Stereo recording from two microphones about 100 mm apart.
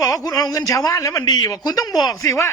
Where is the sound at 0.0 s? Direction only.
35° left (ahead or behind).